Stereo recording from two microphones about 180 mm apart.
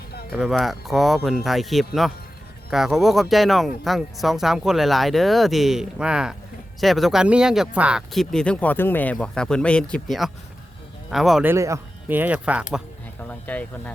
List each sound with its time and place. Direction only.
0.1 s a sound: 60° left (ahead or behind)
0.3 s speech: centre (ahead or behind)
11.4 s speech: 15° right (ahead or behind)
13.2 s speech: 10° left (ahead or behind)